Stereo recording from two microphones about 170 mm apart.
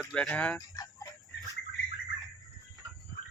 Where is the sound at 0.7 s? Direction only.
20° left (ahead or behind).